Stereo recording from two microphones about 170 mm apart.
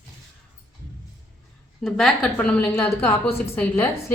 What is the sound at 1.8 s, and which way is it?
A woman's voice, 5° left (ahead or behind).